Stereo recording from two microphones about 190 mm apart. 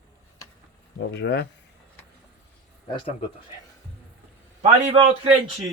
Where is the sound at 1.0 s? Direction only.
65° left (ahead or behind).